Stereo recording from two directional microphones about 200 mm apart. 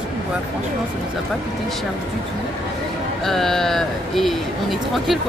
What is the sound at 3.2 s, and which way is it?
Speech, centre (ahead or behind).